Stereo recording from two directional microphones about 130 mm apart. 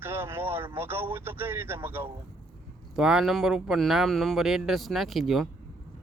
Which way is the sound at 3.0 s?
5° right (ahead or behind).